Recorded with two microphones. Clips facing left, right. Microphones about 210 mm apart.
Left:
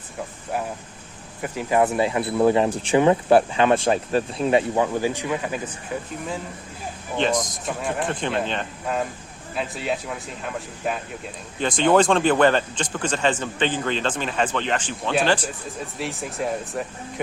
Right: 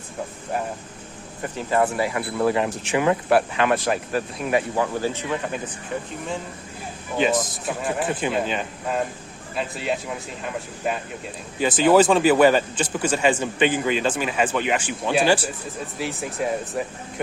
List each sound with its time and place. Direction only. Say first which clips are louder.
1.4 s speech: left 1 dB; 10° left (ahead or behind)
7.2 s speech: right 1 dB; 5° right (ahead or behind)